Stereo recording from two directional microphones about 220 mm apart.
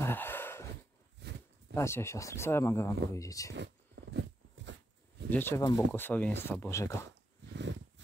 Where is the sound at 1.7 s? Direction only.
10° left (ahead or behind).